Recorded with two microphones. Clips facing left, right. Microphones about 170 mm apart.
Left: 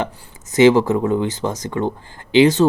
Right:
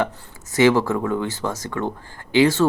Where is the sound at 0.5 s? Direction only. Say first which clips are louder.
Left 4 dB; 20° left (ahead or behind).